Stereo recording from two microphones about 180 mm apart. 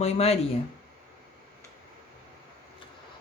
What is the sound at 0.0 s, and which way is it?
Speech, 35° left (ahead or behind).